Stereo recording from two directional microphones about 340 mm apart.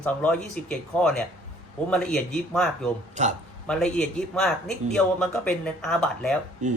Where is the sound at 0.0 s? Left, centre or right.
Centre.